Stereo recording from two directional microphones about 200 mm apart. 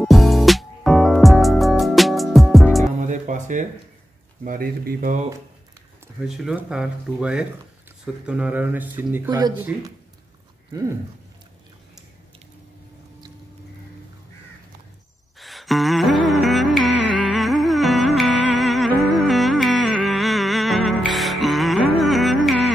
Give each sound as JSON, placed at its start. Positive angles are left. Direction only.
{"t": 0.0, "sound": "music", "side_deg": 0}
{"t": 3.0, "sound": "music", "side_deg": -40}
{"t": 4.5, "sound": "speech", "side_deg": -45}
{"t": 6.2, "sound": "speech", "side_deg": 0}
{"t": 15.3, "sound": "music", "side_deg": 0}